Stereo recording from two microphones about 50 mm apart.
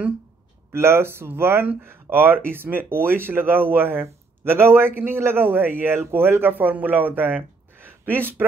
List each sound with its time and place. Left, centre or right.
0.7 s speech: right